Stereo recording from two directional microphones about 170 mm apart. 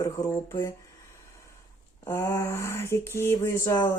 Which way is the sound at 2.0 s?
15° left (ahead or behind).